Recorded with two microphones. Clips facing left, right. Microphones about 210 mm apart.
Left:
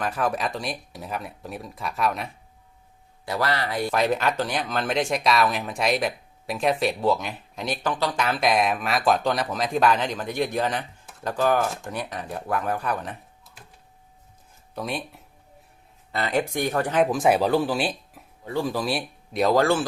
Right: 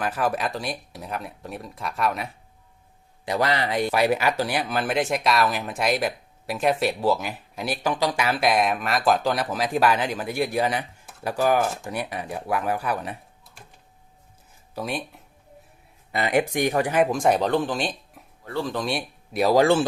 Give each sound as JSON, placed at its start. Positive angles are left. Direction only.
{"t": 0.0, "sound": "speech", "side_deg": 0}
{"t": 3.2, "sound": "a man's voice", "side_deg": -20}
{"t": 3.9, "sound": "speech", "side_deg": -10}
{"t": 14.8, "sound": "speech", "side_deg": 0}
{"t": 16.1, "sound": "speech", "side_deg": -15}
{"t": 19.5, "sound": "a man's voice", "side_deg": -20}